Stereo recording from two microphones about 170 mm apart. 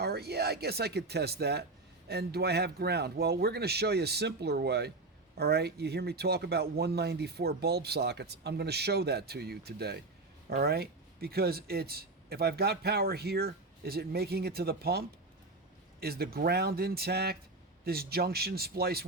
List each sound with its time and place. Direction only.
0.0 s speech: 70° right (ahead or behind)